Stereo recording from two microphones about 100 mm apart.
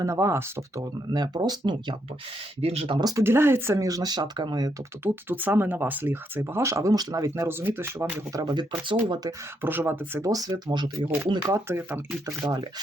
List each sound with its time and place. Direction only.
0.0 s speech: 30° right (ahead or behind)
1.1 s speech: 40° right (ahead or behind)
2.6 s speech: 80° right
2.9 s speech: 40° right (ahead or behind)
3.2 s speech: 25° right (ahead or behind); by 4.7 s 45° right (ahead or behind)
5.0 s speech: 20° right (ahead or behind)
8.3 s speech: 35° right (ahead or behind)
9.0 s speech: 45° right (ahead or behind)
9.6 s speech: 20° right (ahead or behind)
10.2 s speech: 35° right (ahead or behind)
11.5 s speech: 25° right (ahead or behind)
12.4 s speech: 40° right (ahead or behind)